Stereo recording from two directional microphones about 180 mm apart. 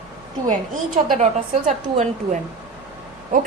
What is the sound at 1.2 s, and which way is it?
A woman's voice, 40° right (ahead or behind).